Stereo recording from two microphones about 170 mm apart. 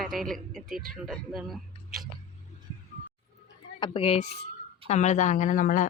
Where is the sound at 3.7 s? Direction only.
30° left (ahead or behind).